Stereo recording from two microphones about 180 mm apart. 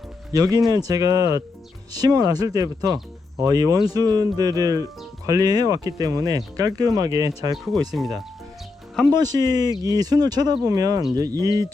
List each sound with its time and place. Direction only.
0.9 s speech: 20° right (ahead or behind)
7.5 s speech: centre (ahead or behind)
9.1 s speech: 20° right (ahead or behind)